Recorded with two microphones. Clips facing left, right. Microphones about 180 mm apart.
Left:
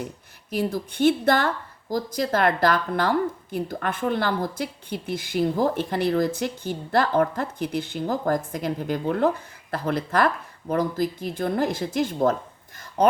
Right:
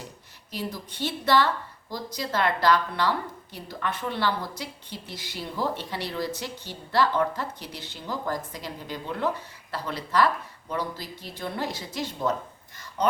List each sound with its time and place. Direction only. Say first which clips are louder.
0.5 s speech: left 8 dB; 50° left (ahead or behind)